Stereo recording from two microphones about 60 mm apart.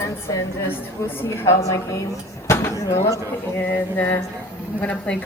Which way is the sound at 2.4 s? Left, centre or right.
Left.